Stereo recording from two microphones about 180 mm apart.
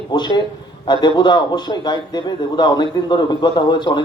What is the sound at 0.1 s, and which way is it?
A man's voice, 25° left (ahead or behind).